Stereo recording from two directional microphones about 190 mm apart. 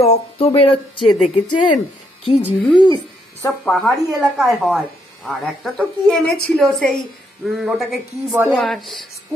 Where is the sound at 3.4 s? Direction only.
5° left (ahead or behind).